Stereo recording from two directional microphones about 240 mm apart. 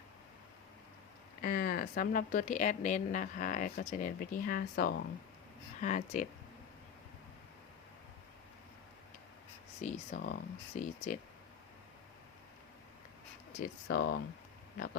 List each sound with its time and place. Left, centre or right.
1.4 s speech: left
9.8 s speech: left
13.6 s speech: left